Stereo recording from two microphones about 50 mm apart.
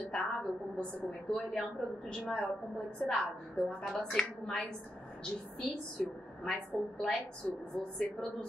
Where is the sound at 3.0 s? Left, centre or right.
Left.